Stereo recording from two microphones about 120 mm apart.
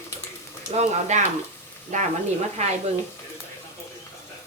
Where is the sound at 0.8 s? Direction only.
75° right (ahead or behind).